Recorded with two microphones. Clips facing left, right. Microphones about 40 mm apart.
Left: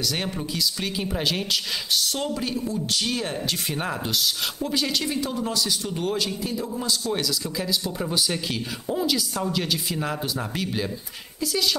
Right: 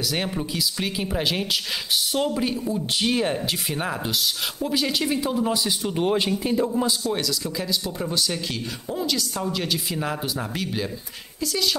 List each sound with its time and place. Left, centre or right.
0.0 s speech: centre
3.7 s speech: centre; by 6.7 s right
6.7 s speech: centre
7.1 s a woman's voice: centre